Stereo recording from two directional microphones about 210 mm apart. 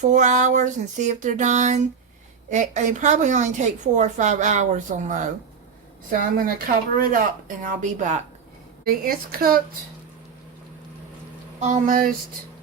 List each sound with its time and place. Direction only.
0.0 s a woman's voice: 35° right (ahead or behind)
8.8 s speech: 45° right (ahead or behind)
11.6 s a woman's voice: 35° right (ahead or behind)